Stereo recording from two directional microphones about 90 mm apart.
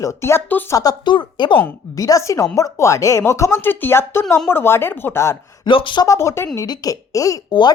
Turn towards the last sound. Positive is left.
turn(degrees=50)  # may be behind; listen again after turning